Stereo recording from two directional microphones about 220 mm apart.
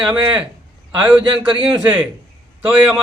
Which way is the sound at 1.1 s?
20° right (ahead or behind).